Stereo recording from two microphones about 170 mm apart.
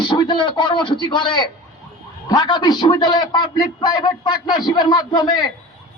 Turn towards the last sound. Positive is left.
turn(degrees=25)  # may be behind; listen again after turning